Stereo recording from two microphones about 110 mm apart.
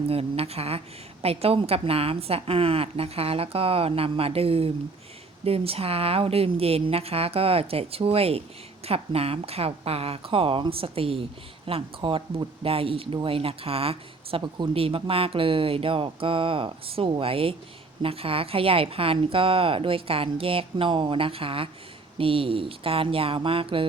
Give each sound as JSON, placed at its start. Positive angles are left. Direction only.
{"t": 0.1, "sound": "a woman's voice", "side_deg": -65}